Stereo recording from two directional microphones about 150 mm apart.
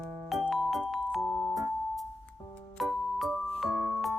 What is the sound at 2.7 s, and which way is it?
Music, centre (ahead or behind).